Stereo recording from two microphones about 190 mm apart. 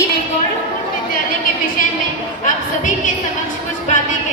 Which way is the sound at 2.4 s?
40° left (ahead or behind).